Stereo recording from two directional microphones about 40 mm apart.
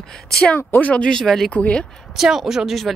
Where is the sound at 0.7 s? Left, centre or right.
Left.